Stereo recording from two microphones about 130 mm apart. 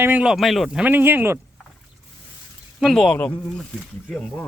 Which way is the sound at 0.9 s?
15° right (ahead or behind).